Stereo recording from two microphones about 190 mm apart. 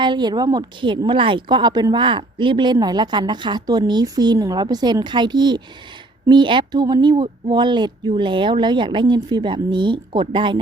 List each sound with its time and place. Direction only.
0.0 s a woman's voice: 25° right (ahead or behind)